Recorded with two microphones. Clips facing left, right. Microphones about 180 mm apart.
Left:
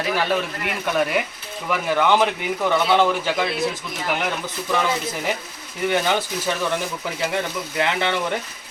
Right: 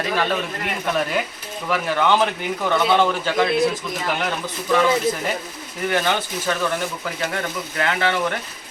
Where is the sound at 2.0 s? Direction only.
10° left (ahead or behind).